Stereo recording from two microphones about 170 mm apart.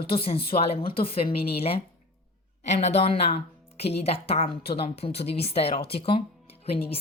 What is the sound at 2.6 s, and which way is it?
Speech, 40° left (ahead or behind).